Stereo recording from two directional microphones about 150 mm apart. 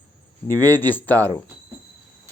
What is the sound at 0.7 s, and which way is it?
Speech, 15° left (ahead or behind).